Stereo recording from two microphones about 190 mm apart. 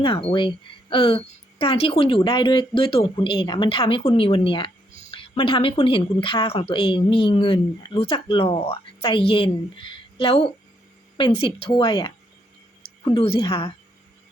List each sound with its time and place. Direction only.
0.0 s speech: 30° left (ahead or behind)
13.1 s speech: 30° left (ahead or behind)